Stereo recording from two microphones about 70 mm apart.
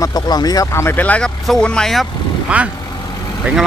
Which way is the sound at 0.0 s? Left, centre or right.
Left.